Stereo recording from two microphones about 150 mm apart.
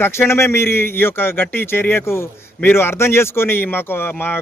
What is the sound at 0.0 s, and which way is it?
A man's voice, 15° left (ahead or behind).